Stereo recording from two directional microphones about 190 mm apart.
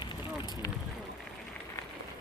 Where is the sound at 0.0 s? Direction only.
20° left (ahead or behind).